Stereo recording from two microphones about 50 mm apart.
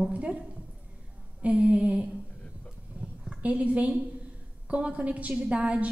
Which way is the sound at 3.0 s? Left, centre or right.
Right.